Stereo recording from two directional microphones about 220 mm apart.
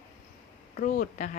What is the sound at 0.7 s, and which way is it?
Speech, 40° left (ahead or behind).